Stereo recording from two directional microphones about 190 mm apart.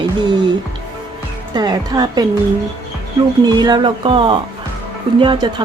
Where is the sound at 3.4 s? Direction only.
20° right (ahead or behind).